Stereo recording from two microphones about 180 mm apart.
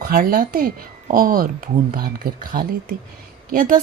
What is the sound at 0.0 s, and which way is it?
Speech, 55° right (ahead or behind).